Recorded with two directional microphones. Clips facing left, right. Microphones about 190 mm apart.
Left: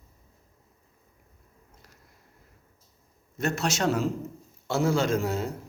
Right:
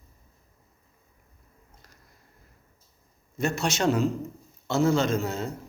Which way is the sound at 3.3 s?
Centre (ahead or behind).